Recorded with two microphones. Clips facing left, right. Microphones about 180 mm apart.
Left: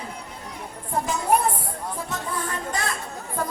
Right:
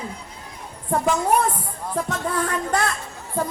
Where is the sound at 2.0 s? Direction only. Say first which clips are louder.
Right 8 dB; 70° right (ahead or behind).